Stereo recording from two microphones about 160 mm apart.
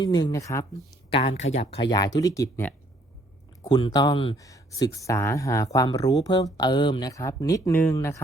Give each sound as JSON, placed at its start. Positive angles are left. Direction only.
{"t": 0.0, "sound": "speech", "side_deg": 25}
{"t": 1.1, "sound": "speech", "side_deg": 35}
{"t": 3.6, "sound": "speech", "side_deg": 30}
{"t": 4.4, "sound": "speech", "side_deg": 20}